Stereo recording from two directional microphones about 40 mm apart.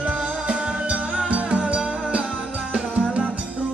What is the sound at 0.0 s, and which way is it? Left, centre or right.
Music, right.